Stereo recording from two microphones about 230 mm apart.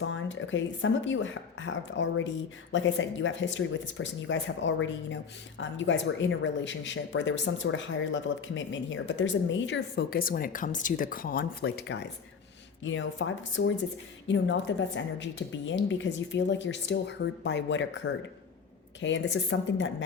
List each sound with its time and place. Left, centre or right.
0.0 s speech: left